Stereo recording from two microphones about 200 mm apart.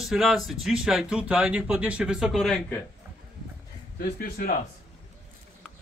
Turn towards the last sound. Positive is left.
turn(degrees=50)  # may be behind; listen again after turning